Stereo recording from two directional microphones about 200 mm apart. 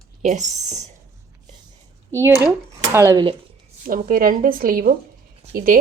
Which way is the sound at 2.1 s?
15° right (ahead or behind).